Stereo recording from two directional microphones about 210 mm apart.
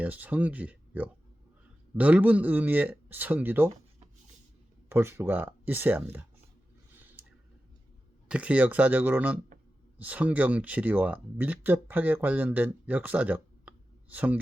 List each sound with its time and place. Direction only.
0.0 s speech: 10° right (ahead or behind)
4.9 s speech: 10° right (ahead or behind)
7.2 s tick: 10° right (ahead or behind)
8.3 s speech: 5° right (ahead or behind)